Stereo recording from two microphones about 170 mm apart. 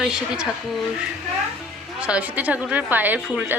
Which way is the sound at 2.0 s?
5° right (ahead or behind).